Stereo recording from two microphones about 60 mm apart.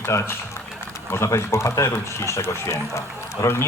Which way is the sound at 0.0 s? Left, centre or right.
Left.